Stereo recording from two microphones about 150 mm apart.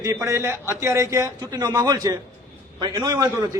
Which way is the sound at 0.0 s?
20° right (ahead or behind).